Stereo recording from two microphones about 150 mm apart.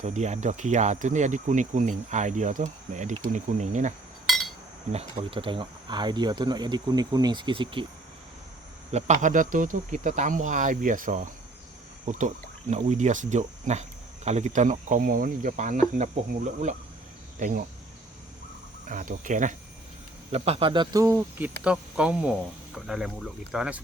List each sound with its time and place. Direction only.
0.0 s speech: 50° right (ahead or behind); by 7.9 s 35° right (ahead or behind)
8.9 s speech: 50° right (ahead or behind)
17.4 s speech: 60° right (ahead or behind)
18.9 s speech: 60° right (ahead or behind)
20.3 s speech: 40° right (ahead or behind); by 23.8 s 5° right (ahead or behind)